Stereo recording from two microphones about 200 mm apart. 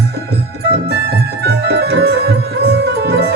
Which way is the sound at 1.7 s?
55° right (ahead or behind).